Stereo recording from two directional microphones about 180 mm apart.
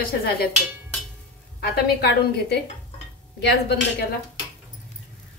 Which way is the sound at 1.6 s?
65° left (ahead or behind).